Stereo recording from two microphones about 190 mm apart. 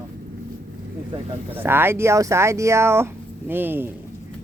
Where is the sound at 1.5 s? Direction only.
10° right (ahead or behind).